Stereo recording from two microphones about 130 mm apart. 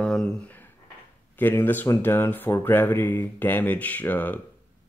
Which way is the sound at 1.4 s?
15° left (ahead or behind).